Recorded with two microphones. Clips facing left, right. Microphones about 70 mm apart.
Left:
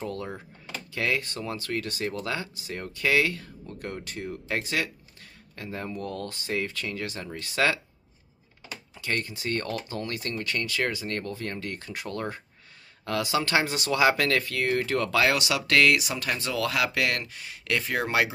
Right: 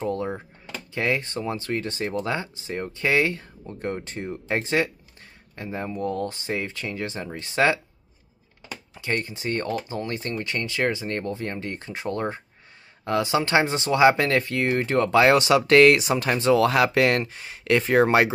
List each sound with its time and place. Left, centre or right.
0.0 s speech: right
8.9 s speech: right